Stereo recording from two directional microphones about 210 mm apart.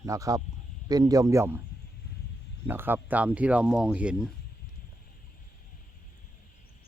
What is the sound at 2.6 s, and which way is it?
Speech, 10° right (ahead or behind).